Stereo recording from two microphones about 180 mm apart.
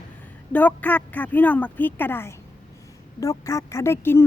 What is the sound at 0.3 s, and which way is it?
Speech, 10° left (ahead or behind).